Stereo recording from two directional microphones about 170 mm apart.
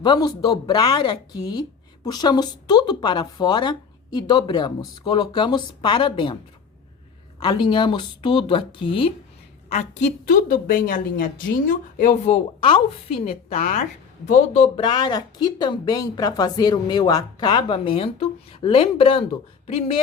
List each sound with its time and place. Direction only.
0.0 s a woman's voice: 25° left (ahead or behind)
7.4 s a woman's voice: 30° left (ahead or behind)
13.6 s speech: 45° left (ahead or behind)
14.8 s a woman's voice: 25° left (ahead or behind)